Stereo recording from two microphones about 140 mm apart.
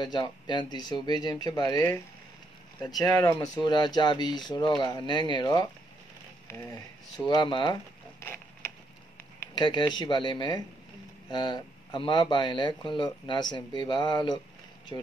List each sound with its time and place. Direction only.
0.0 s speech: 30° left (ahead or behind)
2.9 s speech: 25° left (ahead or behind)
3.6 s speech: 30° left (ahead or behind)
8.2 s a sound: 20° left (ahead or behind)
9.6 s speech: 30° left (ahead or behind)